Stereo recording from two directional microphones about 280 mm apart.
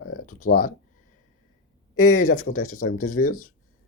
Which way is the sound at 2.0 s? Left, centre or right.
Left.